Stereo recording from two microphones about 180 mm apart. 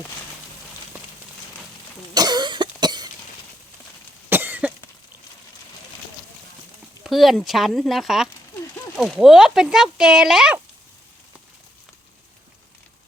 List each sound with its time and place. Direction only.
2.1 s cough: 20° right (ahead or behind)
4.3 s cough: 10° right (ahead or behind)
7.0 s speech: centre (ahead or behind)